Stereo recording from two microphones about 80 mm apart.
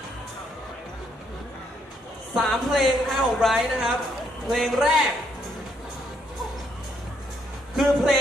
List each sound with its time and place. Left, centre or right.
2.3 s a woman's voice: centre
7.8 s a woman's voice: centre